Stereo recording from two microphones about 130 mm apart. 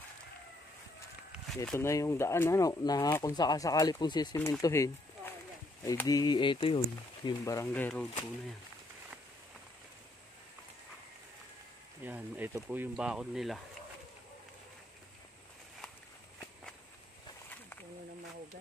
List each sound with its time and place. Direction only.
1.8 s speech: 20° left (ahead or behind)
6.0 s speech: 30° left (ahead or behind)
7.2 s speech: 25° left (ahead or behind)
7.6 s speech: 15° left (ahead or behind)
12.0 s speech: 15° right (ahead or behind)